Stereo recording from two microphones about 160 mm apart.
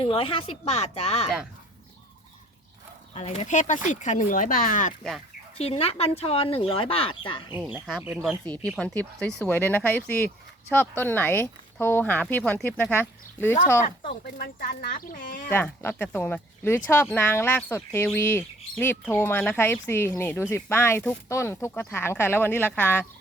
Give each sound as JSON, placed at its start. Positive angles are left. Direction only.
{"t": 0.0, "sound": "speech", "side_deg": 35}
{"t": 3.2, "sound": "speech", "side_deg": 45}
{"t": 5.5, "sound": "speech", "side_deg": 40}
{"t": 7.9, "sound": "speech", "side_deg": -5}
{"t": 9.4, "sound": "speech", "side_deg": 10}
{"t": 13.8, "sound": "speech", "side_deg": 80}
{"t": 15.4, "sound": "speech", "side_deg": 15}